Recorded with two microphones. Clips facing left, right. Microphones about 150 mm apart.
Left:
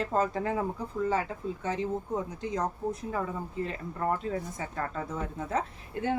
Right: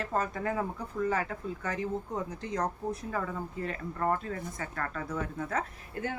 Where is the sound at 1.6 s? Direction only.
25° left (ahead or behind).